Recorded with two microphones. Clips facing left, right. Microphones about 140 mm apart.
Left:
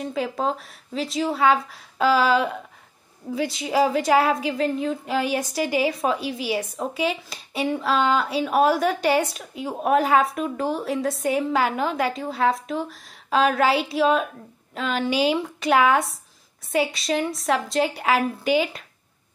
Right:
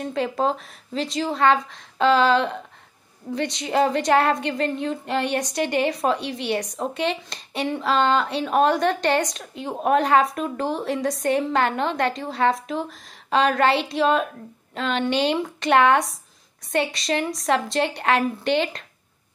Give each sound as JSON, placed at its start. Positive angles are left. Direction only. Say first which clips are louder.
{"t": 0.0, "sound": "a woman's voice", "louder": "right 2 dB", "side_deg": 0}